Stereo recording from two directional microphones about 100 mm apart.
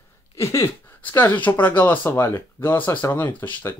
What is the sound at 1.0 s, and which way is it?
Speech, 20° left (ahead or behind).